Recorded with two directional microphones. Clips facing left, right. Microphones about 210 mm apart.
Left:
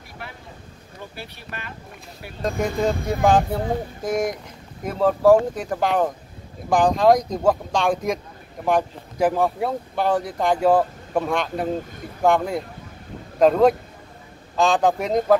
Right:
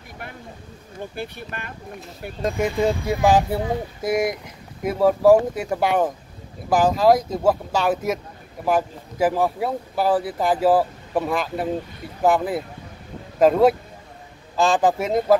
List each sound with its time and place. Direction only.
1.1 s speech: 50° right (ahead or behind)
2.4 s speech: 5° right (ahead or behind)